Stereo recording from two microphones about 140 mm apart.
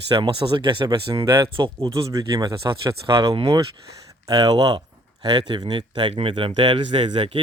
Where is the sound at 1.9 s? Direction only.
20° right (ahead or behind).